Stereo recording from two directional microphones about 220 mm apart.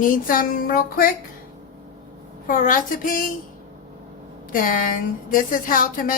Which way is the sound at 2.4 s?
35° left (ahead or behind).